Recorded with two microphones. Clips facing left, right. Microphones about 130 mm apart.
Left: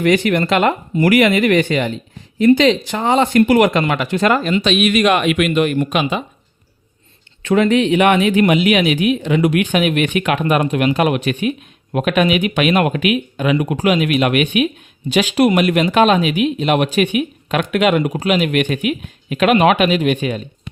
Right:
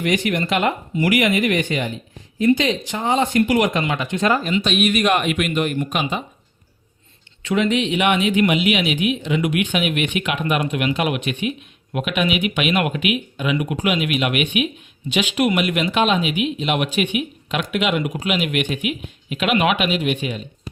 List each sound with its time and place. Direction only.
0.3 s speech: 65° left (ahead or behind)
2.9 s speech: 70° left (ahead or behind); by 6.2 s 90° left
7.4 s speech: 45° left (ahead or behind)